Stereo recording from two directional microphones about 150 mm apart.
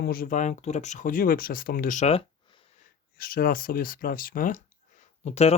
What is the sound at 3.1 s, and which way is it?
Speech, 75° left (ahead or behind).